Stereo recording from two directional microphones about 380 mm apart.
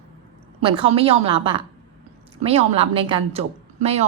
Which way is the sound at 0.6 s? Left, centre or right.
Centre.